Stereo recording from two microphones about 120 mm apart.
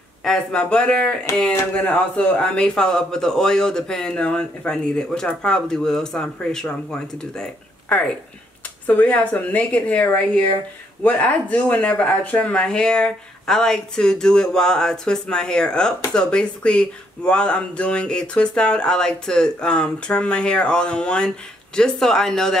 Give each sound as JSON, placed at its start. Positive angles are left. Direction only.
{"t": 0.2, "sound": "a man's voice", "side_deg": 5}